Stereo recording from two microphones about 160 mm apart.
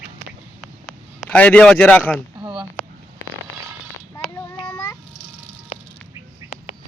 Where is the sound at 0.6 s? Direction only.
Centre (ahead or behind).